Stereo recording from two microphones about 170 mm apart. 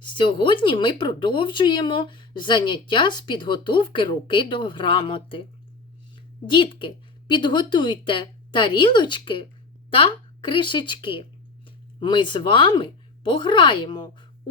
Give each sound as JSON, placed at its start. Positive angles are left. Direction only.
{"t": 0.0, "sound": "speech", "side_deg": 30}